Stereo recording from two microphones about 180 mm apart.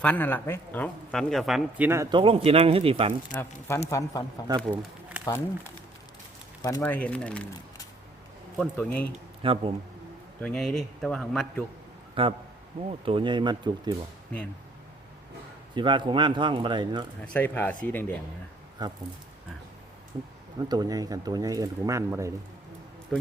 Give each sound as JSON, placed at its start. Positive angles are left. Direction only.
{"t": 0.0, "sound": "speech", "side_deg": 10}
{"t": 1.9, "sound": "speech", "side_deg": -20}
{"t": 3.3, "sound": "speech", "side_deg": 10}
{"t": 4.4, "sound": "speech", "side_deg": -25}
{"t": 5.2, "sound": "speech", "side_deg": 15}
{"t": 8.5, "sound": "a man's voice", "side_deg": 0}
{"t": 9.4, "sound": "speech", "side_deg": -30}
{"t": 10.4, "sound": "a man's voice", "side_deg": 5}
{"t": 12.2, "sound": "speech", "side_deg": -30}
{"t": 15.7, "sound": "speech", "side_deg": -25}
{"t": 17.2, "sound": "speech", "side_deg": 10}
{"t": 18.8, "sound": "speech", "side_deg": -25}
{"t": 20.1, "sound": "speech", "side_deg": -25}